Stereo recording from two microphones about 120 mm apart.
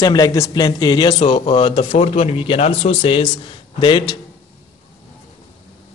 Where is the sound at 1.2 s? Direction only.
50° left (ahead or behind).